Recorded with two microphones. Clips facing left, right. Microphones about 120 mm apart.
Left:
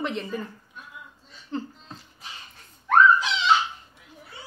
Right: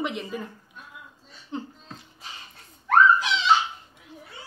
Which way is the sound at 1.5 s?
15° right (ahead or behind).